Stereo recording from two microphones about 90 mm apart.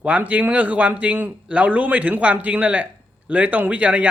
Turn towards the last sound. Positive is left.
turn(degrees=-15)  # may be behind; listen again after turning